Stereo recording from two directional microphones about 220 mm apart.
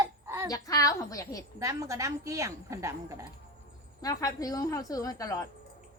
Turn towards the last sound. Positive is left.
turn(degrees=15)  # may be behind; listen again after turning